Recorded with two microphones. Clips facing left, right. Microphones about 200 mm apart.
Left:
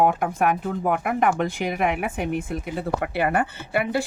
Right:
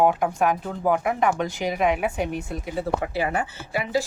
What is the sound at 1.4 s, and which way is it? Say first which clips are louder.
Speech: even; 55° left (ahead or behind).